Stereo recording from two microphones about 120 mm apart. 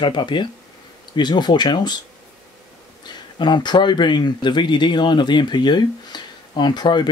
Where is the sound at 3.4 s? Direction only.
40° left (ahead or behind).